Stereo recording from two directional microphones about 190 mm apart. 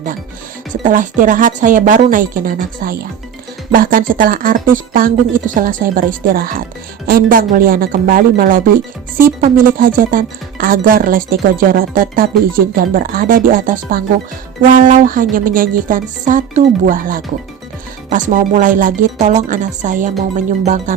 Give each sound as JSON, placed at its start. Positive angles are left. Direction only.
{"t": 0.7, "sound": "speech", "side_deg": -45}